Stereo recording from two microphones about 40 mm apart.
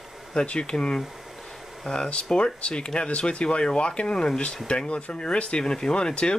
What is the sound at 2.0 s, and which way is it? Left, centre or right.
Speech, left.